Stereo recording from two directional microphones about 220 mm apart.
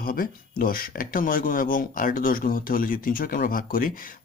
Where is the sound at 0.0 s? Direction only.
40° left (ahead or behind).